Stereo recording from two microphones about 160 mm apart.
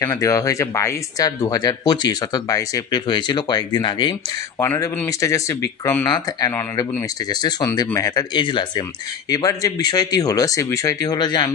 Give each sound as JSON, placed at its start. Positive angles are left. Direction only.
{"t": 0.0, "sound": "speech", "side_deg": 20}